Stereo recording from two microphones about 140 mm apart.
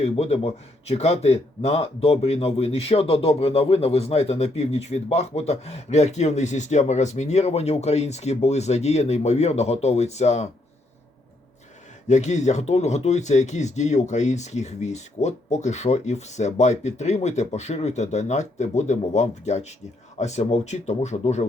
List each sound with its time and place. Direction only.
0.0 s speech: 50° left (ahead or behind)
12.0 s speech: 55° left (ahead or behind)